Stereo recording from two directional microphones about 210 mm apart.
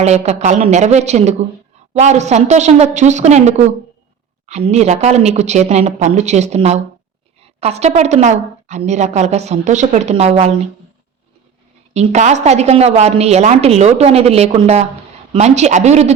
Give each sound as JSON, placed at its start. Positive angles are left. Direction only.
{"t": 0.0, "sound": "a woman's voice", "side_deg": -30}
{"t": 11.9, "sound": "a woman's voice", "side_deg": -35}